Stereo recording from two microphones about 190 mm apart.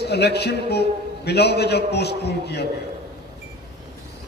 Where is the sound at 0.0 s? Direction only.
60° left (ahead or behind).